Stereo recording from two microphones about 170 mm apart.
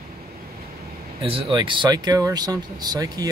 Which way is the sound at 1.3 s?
30° right (ahead or behind).